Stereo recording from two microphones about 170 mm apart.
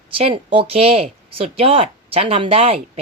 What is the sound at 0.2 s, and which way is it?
Speech, 35° right (ahead or behind).